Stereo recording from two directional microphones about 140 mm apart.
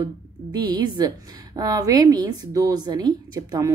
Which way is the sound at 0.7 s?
30° right (ahead or behind).